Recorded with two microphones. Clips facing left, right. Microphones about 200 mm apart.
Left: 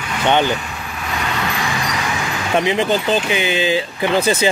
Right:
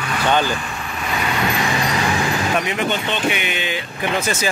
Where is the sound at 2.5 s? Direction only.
25° left (ahead or behind).